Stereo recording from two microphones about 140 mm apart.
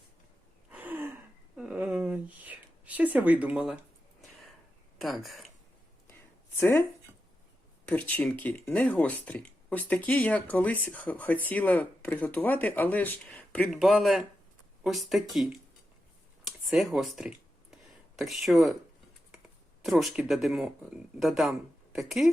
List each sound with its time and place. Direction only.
0.7 s gasp: 10° right (ahead or behind)
1.5 s a sound: 10° right (ahead or behind)
4.9 s speech: centre (ahead or behind)
6.6 s speech: 15° left (ahead or behind)
7.9 s speech: 10° left (ahead or behind)
13.7 s speech: centre (ahead or behind)
16.5 s a sound: centre (ahead or behind)
18.2 s speech: centre (ahead or behind)
19.8 s speech: centre (ahead or behind)